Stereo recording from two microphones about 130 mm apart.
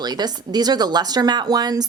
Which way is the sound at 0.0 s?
30° right (ahead or behind).